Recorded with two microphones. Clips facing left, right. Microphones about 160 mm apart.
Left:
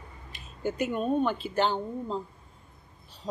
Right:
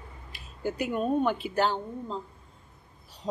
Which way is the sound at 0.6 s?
5° right (ahead or behind).